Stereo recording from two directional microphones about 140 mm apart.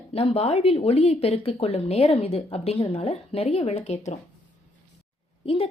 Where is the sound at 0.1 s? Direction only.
45° left (ahead or behind).